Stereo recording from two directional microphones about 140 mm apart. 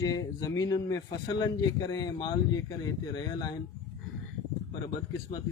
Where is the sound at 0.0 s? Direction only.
25° left (ahead or behind).